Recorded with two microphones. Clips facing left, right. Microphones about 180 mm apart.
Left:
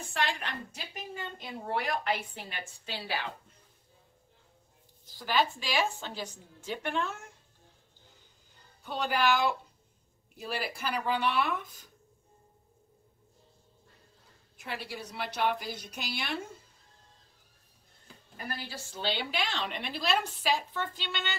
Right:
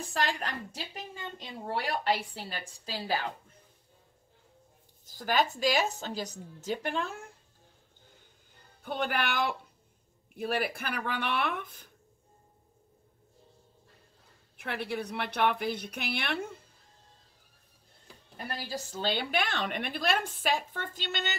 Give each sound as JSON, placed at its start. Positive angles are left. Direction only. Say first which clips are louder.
{"t": 0.0, "sound": "a woman's voice", "louder": "right 1 dB", "side_deg": -35}
{"t": 5.0, "sound": "a woman's voice", "louder": "right 1 dB", "side_deg": -45}
{"t": 8.8, "sound": "a woman's voice", "louder": "left 3 dB", "side_deg": -55}
{"t": 14.6, "sound": "a woman's voice", "louder": "right 5 dB", "side_deg": -60}
{"t": 18.6, "sound": "a woman's voice", "louder": "right 7 dB", "side_deg": -40}